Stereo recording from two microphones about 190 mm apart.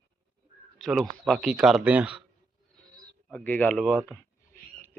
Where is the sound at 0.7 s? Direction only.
Centre (ahead or behind).